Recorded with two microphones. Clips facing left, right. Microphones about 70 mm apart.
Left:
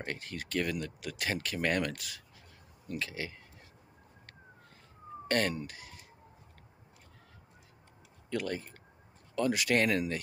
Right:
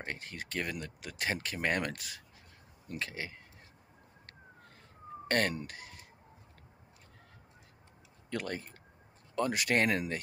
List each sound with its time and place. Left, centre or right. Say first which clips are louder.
0.0 s speech: left 2 dB; right
5.3 s speech: even; right
8.3 s speech: left 3 dB; right